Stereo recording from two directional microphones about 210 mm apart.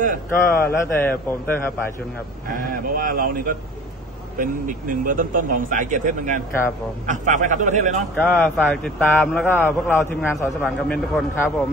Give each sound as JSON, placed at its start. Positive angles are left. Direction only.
{"t": 0.3, "sound": "a man's voice", "side_deg": 10}
{"t": 2.5, "sound": "a man's voice", "side_deg": -40}
{"t": 8.2, "sound": "a man's voice", "side_deg": 5}